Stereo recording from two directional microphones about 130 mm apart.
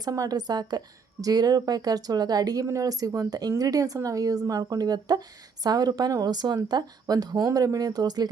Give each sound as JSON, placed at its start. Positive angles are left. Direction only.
{"t": 0.0, "sound": "speech", "side_deg": -30}